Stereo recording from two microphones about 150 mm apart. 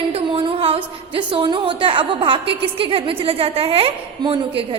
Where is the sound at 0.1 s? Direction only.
35° right (ahead or behind).